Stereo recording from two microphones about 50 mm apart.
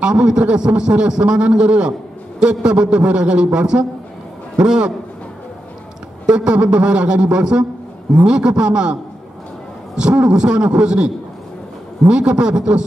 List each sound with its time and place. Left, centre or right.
0.0 s a man's voice: centre
6.2 s a man's voice: centre
10.2 s a man's voice: centre
12.1 s a man's voice: centre